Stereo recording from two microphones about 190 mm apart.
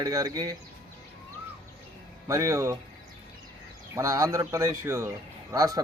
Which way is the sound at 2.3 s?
15° right (ahead or behind).